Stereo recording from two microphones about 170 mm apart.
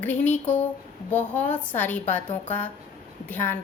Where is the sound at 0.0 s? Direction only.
10° left (ahead or behind).